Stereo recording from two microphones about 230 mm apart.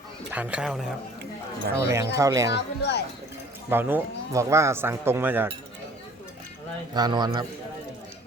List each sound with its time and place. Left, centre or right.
0.3 s speech: centre
1.9 s speech: centre
2.6 s speech: left
3.7 s speech: centre
6.9 s speech: centre